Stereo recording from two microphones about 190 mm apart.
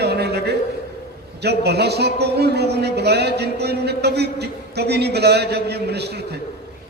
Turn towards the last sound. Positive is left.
turn(degrees=-60)  # may be behind; listen again after turning